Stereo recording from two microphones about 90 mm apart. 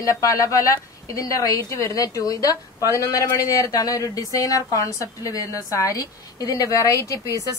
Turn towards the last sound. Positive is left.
turn(degrees=35)  # may be behind; listen again after turning